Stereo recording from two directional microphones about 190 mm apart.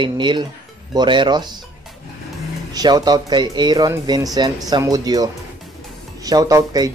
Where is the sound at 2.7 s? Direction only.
20° right (ahead or behind).